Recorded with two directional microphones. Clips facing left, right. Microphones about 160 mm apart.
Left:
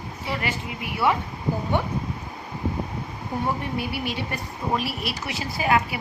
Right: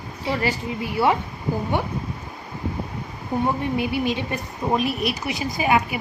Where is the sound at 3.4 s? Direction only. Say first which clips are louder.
Right 4 dB; 20° right (ahead or behind).